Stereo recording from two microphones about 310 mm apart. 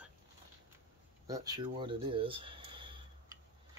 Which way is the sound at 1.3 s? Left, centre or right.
Centre.